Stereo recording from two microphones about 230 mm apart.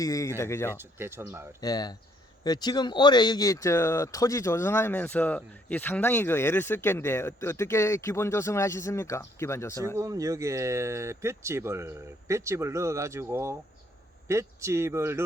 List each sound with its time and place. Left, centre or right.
0.0 s speech: centre
0.8 s speech: centre
1.6 s speech: centre
10.0 s speech: centre